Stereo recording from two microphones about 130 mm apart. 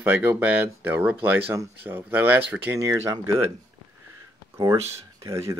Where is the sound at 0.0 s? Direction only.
15° right (ahead or behind).